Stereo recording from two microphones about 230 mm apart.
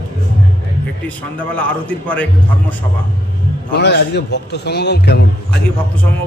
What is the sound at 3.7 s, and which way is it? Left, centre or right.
A man's voice, left.